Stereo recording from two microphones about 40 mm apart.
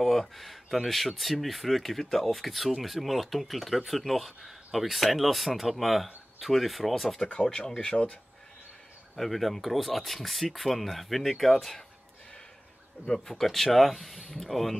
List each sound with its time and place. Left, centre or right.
0.0 s speech: centre
7.3 s speech: centre
9.1 s speech: centre
13.3 s speech: centre